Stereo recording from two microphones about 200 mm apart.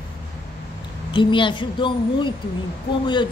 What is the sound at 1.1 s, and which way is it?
Speech, 25° left (ahead or behind).